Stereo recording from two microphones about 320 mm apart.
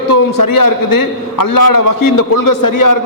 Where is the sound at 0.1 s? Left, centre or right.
Left.